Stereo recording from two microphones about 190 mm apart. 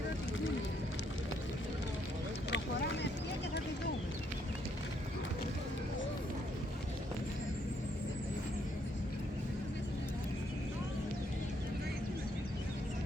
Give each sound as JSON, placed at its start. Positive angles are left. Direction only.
{"t": 2.5, "sound": "vehicle", "side_deg": 70}